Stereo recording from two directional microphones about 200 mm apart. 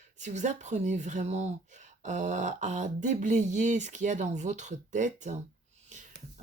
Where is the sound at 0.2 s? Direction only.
35° right (ahead or behind).